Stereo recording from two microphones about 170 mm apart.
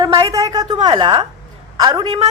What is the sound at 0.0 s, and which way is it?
A woman's voice, 20° right (ahead or behind).